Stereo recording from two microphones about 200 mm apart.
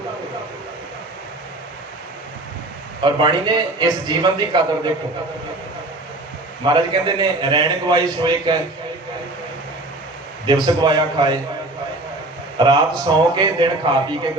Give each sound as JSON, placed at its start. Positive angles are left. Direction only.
{"t": 3.0, "sound": "a man's voice", "side_deg": -25}
{"t": 6.7, "sound": "a man's voice", "side_deg": -20}
{"t": 10.4, "sound": "a man's voice", "side_deg": -20}
{"t": 12.5, "sound": "a man's voice", "side_deg": -20}